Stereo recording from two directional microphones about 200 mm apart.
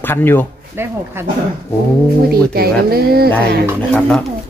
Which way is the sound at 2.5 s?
50° right (ahead or behind).